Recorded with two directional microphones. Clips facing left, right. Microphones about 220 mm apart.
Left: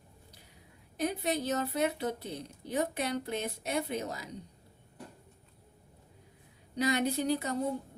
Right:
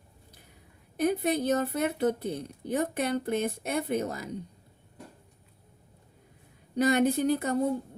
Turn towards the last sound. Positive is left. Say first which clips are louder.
# right 5 dB
turn(degrees=-55)  # may be behind; listen again after turning